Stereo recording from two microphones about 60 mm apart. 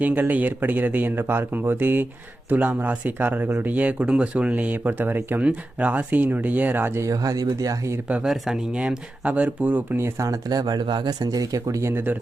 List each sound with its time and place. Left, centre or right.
0.0 s speech: right
7.0 s speech: right
8.7 s speech: centre
10.2 s speech: right
11.2 s speech: right
11.8 s speech: right